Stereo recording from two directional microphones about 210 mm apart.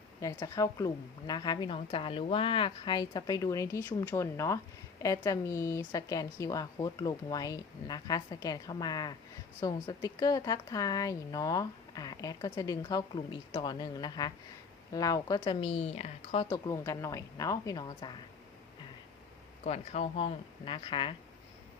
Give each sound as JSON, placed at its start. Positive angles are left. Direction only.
{"t": 0.2, "sound": "a woman's voice", "side_deg": 15}
{"t": 19.6, "sound": "speech", "side_deg": 30}